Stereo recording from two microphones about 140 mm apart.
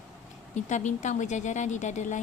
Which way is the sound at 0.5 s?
60° left (ahead or behind).